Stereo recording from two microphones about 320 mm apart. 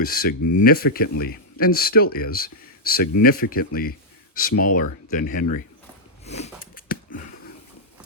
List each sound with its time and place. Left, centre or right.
0.0 s speech: left
6.2 s sniff: left